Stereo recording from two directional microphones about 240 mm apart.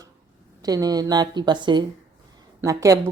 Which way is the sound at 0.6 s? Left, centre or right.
Centre.